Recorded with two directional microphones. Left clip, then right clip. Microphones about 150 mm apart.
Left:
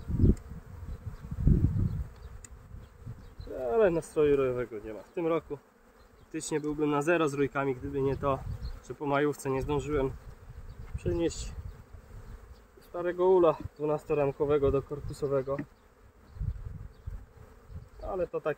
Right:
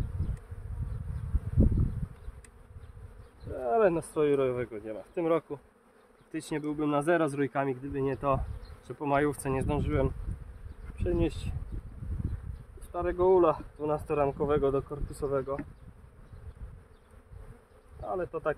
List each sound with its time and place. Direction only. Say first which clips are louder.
3.5 s speech: even; 25° right (ahead or behind)
12.9 s speech: even; 25° right (ahead or behind)
18.0 s speech: even; 20° right (ahead or behind)